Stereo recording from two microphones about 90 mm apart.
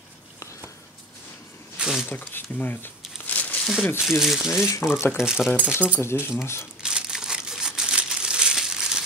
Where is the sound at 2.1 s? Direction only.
20° left (ahead or behind).